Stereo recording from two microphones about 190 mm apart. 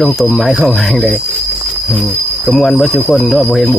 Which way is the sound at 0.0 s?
Centre (ahead or behind).